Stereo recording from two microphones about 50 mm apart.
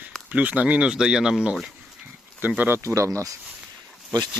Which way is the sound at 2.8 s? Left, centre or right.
Right.